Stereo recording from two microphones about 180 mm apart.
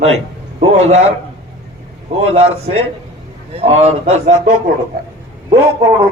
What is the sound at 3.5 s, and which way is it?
A man's voice, 35° right (ahead or behind).